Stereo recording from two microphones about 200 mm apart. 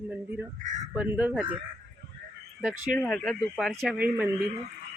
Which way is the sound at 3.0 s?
Centre (ahead or behind).